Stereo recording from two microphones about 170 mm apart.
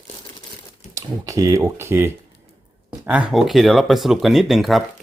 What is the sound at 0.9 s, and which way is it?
Speech, 20° right (ahead or behind).